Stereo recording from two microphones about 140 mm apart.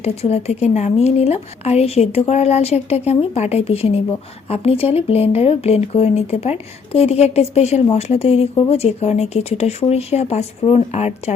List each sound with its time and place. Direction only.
0.0 s speech: 50° left (ahead or behind)